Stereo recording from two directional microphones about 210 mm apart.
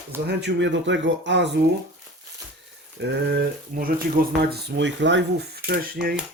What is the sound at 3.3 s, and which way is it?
Speech, 45° right (ahead or behind).